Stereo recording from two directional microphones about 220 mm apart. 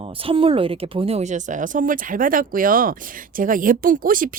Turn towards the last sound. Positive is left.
turn(degrees=-40)  # may be behind; listen again after turning